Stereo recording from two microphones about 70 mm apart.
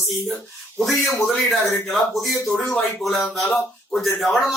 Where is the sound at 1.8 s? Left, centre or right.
Centre.